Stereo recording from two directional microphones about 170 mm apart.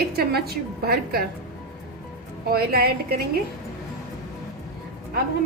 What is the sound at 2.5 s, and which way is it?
Speech, 65° right (ahead or behind).